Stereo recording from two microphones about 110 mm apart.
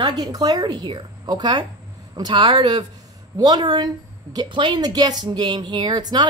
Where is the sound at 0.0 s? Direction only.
40° right (ahead or behind).